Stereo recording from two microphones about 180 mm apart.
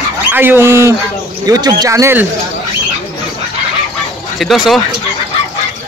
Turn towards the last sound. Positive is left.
turn(degrees=0)  # may be behind; listen again after turning